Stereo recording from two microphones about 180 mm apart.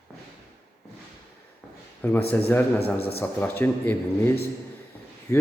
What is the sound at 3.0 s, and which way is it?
Speech, 60° left (ahead or behind).